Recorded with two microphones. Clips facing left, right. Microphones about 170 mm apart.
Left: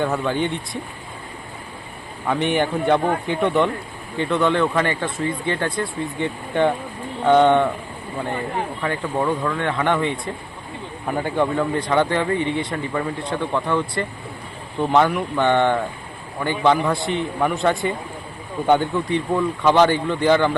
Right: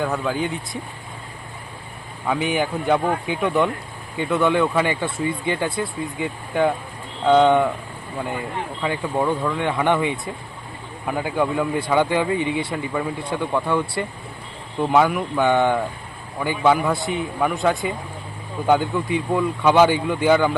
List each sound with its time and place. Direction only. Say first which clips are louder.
0.0 s a man's voice: left 2 dB; 5° right (ahead or behind)
2.2 s a man's voice: left 2 dB; centre (ahead or behind)
8.8 s a man's voice: right 2 dB; 10° right (ahead or behind)
18.9 s speech: left 1 dB; 10° right (ahead or behind)